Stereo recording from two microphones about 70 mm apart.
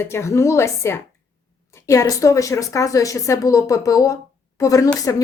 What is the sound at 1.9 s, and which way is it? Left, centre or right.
A woman's voice, left.